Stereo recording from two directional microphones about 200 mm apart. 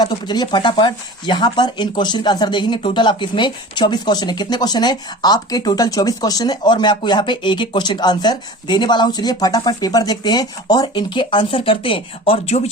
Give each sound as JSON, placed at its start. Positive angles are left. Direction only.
{"t": 0.0, "sound": "speech", "side_deg": 20}